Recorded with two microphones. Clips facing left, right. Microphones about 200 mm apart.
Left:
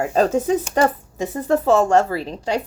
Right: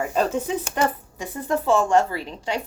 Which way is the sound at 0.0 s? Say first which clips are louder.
Left 5 dB; 45° left (ahead or behind).